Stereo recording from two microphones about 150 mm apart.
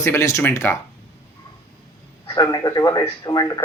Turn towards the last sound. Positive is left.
turn(degrees=25)  # may be behind; listen again after turning